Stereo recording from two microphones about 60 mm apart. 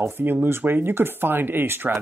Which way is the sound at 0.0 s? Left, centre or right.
Right.